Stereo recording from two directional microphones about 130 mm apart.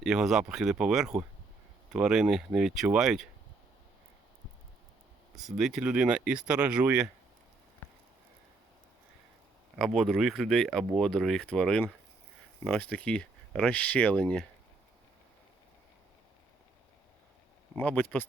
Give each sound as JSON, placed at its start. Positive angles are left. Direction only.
{"t": 0.0, "sound": "speech", "side_deg": -5}
{"t": 5.5, "sound": "speech", "side_deg": -5}
{"t": 9.7, "sound": "speech", "side_deg": 0}
{"t": 17.7, "sound": "speech", "side_deg": 15}